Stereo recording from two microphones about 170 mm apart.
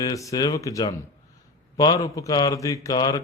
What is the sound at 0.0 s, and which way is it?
A man's voice, 20° left (ahead or behind).